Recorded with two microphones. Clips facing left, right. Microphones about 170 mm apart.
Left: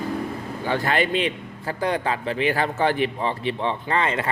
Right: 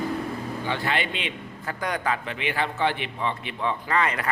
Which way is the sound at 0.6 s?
45° left (ahead or behind).